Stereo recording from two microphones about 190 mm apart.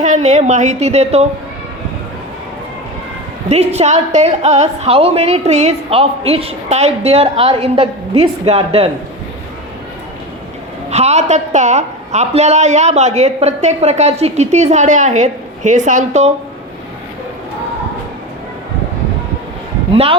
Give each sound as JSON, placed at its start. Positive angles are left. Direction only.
{"t": 0.0, "sound": "a woman's voice", "side_deg": -40}
{"t": 3.5, "sound": "a woman's voice", "side_deg": -35}
{"t": 10.8, "sound": "a woman's voice", "side_deg": -35}
{"t": 19.9, "sound": "speech", "side_deg": -30}